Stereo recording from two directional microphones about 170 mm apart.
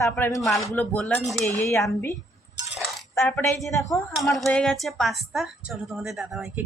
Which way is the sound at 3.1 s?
15° left (ahead or behind).